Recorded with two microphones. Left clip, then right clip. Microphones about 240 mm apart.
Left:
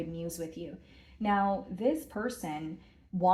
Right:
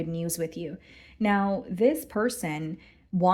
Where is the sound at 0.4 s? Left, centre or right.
Right.